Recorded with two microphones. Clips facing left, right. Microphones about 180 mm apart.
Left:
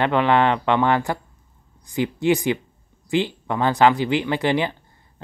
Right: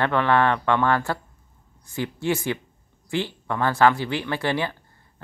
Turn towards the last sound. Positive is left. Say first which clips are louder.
# left 4 dB
turn(degrees=20)  # may be behind; listen again after turning